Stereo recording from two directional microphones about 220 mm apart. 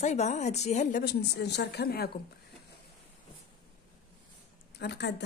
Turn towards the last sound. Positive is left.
turn(degrees=50)  # may be behind; listen again after turning